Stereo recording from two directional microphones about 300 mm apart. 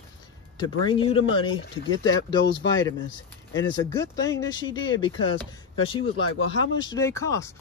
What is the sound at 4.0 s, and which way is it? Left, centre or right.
Speech, centre.